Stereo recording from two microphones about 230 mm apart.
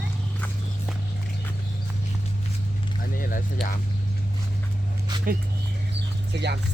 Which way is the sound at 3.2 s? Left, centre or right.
Left.